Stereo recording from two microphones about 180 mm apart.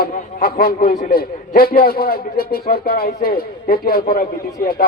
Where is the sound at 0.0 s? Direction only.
55° left (ahead or behind).